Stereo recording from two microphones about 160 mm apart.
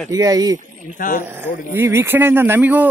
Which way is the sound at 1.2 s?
15° right (ahead or behind).